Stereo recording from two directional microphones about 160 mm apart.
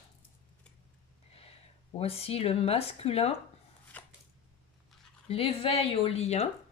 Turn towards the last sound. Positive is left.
turn(degrees=40)  # may be behind; listen again after turning